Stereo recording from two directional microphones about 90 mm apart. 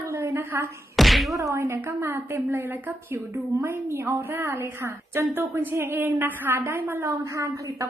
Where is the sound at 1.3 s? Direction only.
35° right (ahead or behind).